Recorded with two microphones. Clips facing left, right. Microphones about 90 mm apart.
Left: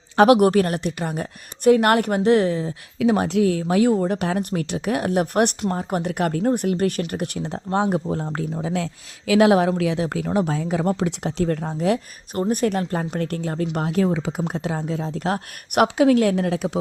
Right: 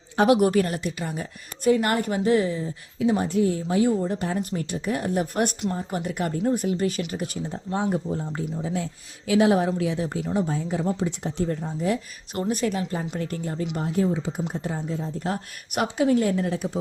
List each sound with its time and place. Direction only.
0.2 s a woman's voice: 65° left (ahead or behind); by 3.9 s 90° left
3.9 s a woman's voice: 70° left (ahead or behind)
7.5 s speech: 75° left (ahead or behind)
12.3 s speech: 45° left (ahead or behind); by 16.7 s 90° left